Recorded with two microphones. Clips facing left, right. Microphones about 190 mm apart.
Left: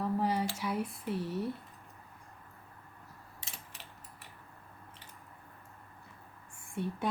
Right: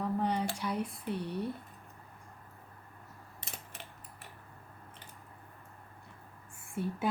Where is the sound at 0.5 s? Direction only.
5° left (ahead or behind).